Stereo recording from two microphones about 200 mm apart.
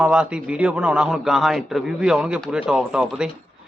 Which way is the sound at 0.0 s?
5° right (ahead or behind).